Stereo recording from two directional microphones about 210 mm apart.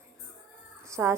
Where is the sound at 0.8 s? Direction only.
15° right (ahead or behind).